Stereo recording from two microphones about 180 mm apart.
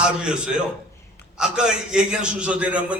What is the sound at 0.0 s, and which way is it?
A man's voice, 5° right (ahead or behind).